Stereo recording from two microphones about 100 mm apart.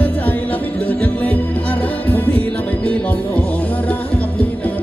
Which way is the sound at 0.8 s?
15° left (ahead or behind).